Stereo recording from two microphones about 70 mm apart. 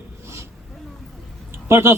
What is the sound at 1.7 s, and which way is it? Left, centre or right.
Speech, right.